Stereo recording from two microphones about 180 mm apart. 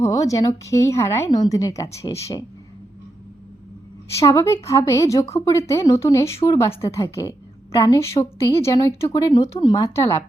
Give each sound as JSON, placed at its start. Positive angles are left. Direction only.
{"t": 0.0, "sound": "speech", "side_deg": 15}
{"t": 4.2, "sound": "speech", "side_deg": 15}